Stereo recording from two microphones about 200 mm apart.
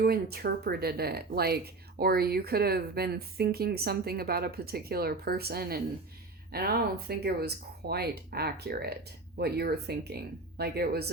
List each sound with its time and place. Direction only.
0.0 s speech: 50° right (ahead or behind)